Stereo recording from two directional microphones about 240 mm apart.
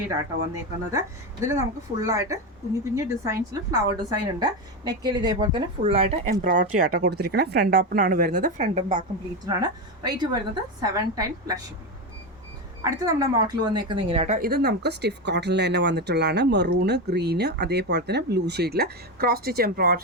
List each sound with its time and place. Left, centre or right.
0.1 s a woman's voice: centre
9.5 s speech: centre
12.8 s speech: centre
14.3 s speech: right